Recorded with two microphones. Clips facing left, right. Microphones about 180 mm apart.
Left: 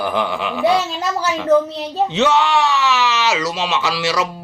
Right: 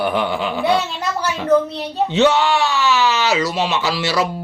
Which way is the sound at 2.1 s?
35° right (ahead or behind).